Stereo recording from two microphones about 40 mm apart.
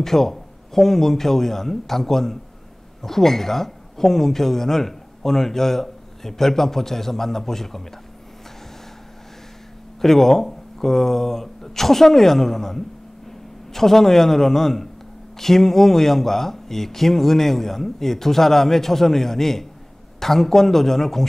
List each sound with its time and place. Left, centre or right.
0.0 s a woman's voice: centre
10.0 s a woman's voice: centre